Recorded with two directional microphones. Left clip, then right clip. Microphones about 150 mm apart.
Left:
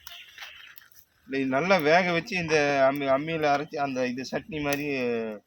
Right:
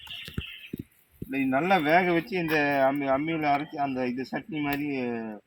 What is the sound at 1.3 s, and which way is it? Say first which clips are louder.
Speech: left 1 dB; 50° left (ahead or behind).